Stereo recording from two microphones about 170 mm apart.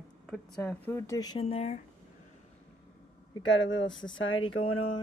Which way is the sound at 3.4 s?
90° left.